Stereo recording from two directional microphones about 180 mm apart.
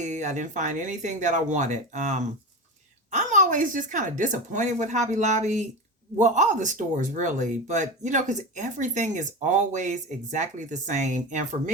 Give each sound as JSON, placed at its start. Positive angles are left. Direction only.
{"t": 0.0, "sound": "speech", "side_deg": -40}